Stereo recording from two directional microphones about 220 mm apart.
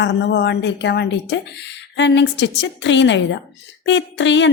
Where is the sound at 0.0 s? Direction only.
55° left (ahead or behind).